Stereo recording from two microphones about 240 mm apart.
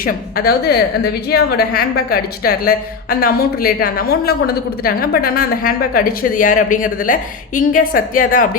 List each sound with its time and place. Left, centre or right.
0.0 s a woman's voice: left